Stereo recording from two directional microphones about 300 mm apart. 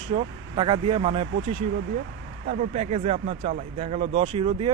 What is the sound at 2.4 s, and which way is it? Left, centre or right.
Speech, right.